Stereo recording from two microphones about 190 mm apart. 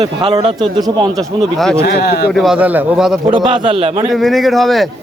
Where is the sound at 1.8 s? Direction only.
60° left (ahead or behind).